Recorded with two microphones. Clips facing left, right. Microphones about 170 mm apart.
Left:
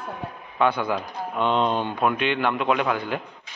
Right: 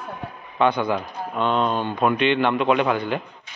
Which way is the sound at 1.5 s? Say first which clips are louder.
Even; 20° left (ahead or behind).